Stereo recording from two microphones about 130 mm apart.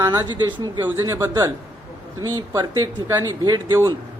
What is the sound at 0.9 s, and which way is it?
Speech, 20° right (ahead or behind).